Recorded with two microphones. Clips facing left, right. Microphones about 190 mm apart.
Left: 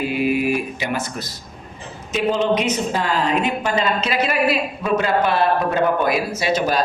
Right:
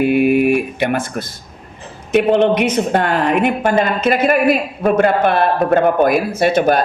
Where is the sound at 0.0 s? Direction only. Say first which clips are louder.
Right 7 dB; 60° right (ahead or behind).